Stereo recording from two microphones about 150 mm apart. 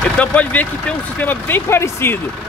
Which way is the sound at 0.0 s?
10° left (ahead or behind).